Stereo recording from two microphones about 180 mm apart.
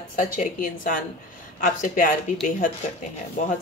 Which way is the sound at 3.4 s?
45° left (ahead or behind).